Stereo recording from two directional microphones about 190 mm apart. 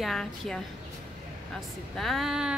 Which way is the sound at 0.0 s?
Centre (ahead or behind).